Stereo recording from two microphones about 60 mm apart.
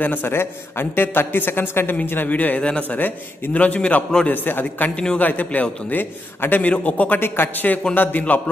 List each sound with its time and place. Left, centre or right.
0.0 s a man's voice: left
4.9 s a man's voice: centre
5.2 s a man's voice: left
6.6 s a man's voice: left
7.2 s a man's voice: left